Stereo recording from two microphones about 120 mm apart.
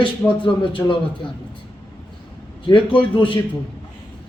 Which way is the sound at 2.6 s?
45° left (ahead or behind).